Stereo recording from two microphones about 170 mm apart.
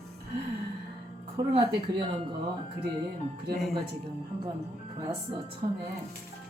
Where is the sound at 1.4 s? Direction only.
25° right (ahead or behind).